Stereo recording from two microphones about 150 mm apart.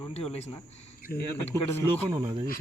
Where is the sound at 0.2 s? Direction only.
45° left (ahead or behind).